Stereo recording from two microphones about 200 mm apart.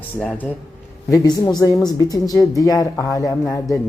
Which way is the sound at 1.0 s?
20° left (ahead or behind).